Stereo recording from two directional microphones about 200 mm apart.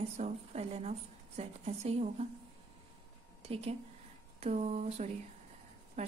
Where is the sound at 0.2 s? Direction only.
30° right (ahead or behind).